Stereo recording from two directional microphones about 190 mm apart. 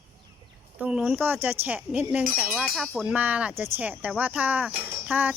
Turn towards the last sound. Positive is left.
turn(degrees=-10)  # may be behind; listen again after turning